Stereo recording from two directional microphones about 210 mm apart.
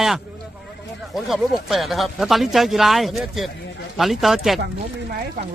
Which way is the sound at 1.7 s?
Centre (ahead or behind).